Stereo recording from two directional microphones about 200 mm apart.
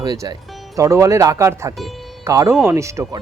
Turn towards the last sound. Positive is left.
turn(degrees=-15)  # may be behind; listen again after turning